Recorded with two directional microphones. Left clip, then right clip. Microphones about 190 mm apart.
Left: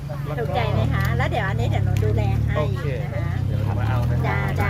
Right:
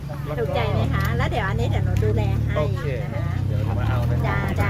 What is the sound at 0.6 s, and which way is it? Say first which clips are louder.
Speech: even; 25° right (ahead or behind).